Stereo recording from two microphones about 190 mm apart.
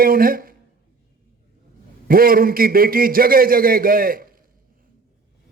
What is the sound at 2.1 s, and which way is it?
A man's voice, 50° right (ahead or behind).